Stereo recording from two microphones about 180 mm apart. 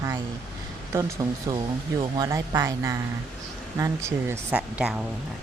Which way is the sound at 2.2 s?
20° right (ahead or behind).